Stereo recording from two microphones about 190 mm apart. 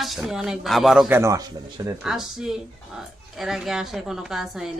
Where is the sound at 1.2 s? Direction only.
15° right (ahead or behind).